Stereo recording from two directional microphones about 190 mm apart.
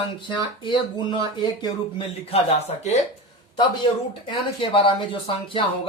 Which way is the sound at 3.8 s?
25° left (ahead or behind).